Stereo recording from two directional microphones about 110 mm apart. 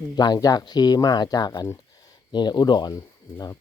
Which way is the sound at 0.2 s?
40° left (ahead or behind).